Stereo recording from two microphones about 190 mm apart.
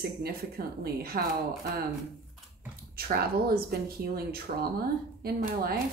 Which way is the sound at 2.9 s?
55° right (ahead or behind).